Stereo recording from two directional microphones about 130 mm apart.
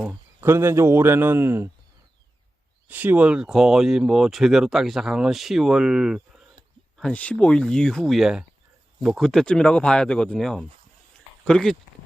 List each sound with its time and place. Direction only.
0.1 s speech: 20° right (ahead or behind)
2.8 s speech: 15° right (ahead or behind)
6.9 s speech: 5° left (ahead or behind)